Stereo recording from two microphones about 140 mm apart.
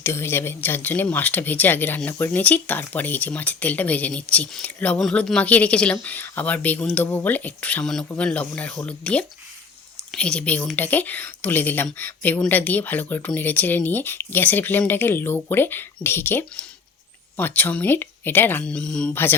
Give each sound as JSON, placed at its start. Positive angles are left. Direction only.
{"t": 0.0, "sound": "speech", "side_deg": 15}